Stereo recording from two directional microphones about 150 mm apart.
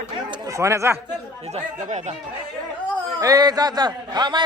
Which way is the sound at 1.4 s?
50° right (ahead or behind).